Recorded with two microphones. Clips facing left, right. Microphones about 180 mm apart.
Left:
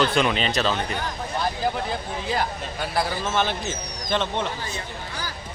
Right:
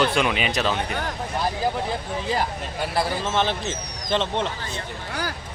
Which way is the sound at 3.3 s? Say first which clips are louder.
Right 1 dB; 25° right (ahead or behind).